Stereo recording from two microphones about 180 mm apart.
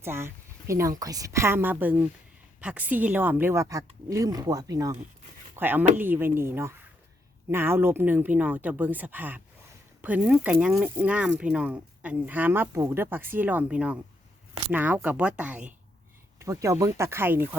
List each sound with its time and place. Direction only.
0.0 s speech: 15° right (ahead or behind)